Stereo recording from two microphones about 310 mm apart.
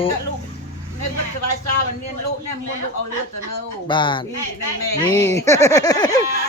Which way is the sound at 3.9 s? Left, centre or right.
Centre.